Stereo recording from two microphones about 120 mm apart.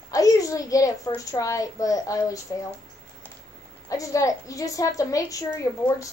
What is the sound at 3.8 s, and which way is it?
A child's voice, 30° left (ahead or behind).